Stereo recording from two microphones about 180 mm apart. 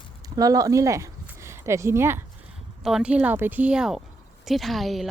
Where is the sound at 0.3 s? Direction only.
20° right (ahead or behind).